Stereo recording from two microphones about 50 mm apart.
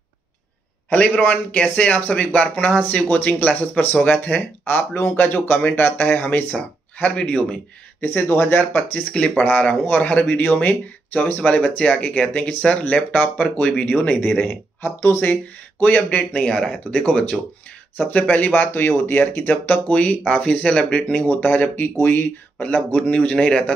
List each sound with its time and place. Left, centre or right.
0.9 s speech: left
8.0 s speech: left
9.4 s speech: left
15.0 s speech: left
16.1 s speech: left
17.9 s speech: left
23.0 s speech: left